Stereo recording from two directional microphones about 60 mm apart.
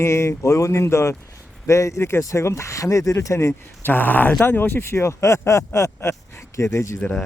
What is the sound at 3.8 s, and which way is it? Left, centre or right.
Speech, left.